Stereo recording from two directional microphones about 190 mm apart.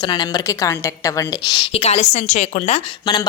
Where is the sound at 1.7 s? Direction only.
35° left (ahead or behind).